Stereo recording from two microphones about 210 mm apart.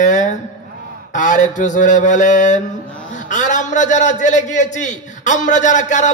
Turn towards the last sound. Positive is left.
turn(degrees=35)  # may be behind; listen again after turning